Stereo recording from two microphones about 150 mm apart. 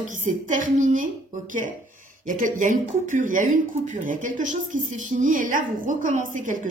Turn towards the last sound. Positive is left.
turn(degrees=-60)  # may be behind; listen again after turning